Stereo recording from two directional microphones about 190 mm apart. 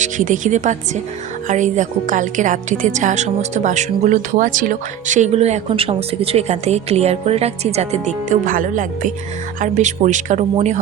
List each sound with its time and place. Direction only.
0.0 s a woman's voice: 40° right (ahead or behind)